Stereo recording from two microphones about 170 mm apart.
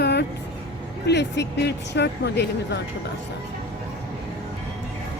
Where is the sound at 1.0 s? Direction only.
90° left.